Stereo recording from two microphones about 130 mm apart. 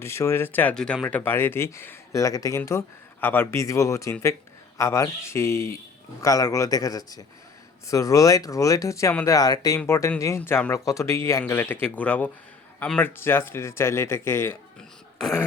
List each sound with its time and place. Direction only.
0.0 s speech: 20° left (ahead or behind)
14.8 s throat clearing: centre (ahead or behind)